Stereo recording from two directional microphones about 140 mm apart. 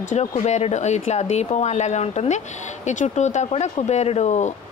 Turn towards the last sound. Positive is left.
turn(degrees=55)  # may be behind; listen again after turning